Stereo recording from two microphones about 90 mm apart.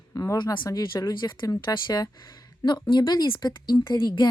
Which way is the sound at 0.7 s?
40° left (ahead or behind).